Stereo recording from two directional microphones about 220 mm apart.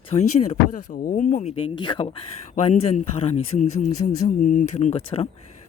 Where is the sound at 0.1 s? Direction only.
30° left (ahead or behind).